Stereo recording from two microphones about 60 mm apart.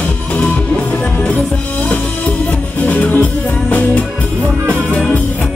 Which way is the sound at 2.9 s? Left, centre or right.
Left.